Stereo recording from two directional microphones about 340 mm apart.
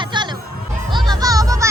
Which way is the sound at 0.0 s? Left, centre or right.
Centre.